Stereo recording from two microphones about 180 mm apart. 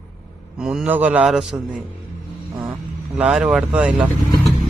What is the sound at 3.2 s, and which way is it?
Speech, 5° right (ahead or behind).